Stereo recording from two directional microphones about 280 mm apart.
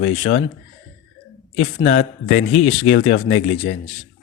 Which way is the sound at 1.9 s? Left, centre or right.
Left.